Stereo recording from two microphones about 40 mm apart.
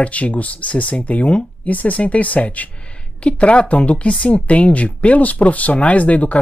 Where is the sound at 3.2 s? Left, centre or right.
Left.